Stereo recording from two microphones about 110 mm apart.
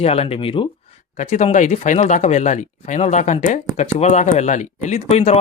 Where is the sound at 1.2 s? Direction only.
85° left.